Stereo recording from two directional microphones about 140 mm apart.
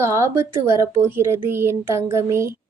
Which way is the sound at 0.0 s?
20° right (ahead or behind).